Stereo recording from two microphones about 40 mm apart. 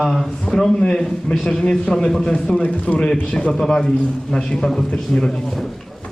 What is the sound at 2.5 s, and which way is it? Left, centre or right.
A man's voice, left.